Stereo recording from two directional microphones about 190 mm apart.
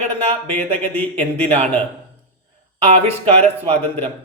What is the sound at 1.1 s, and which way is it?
Speech, 35° right (ahead or behind).